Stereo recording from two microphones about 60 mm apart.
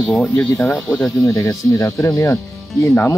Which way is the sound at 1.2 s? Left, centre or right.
Left.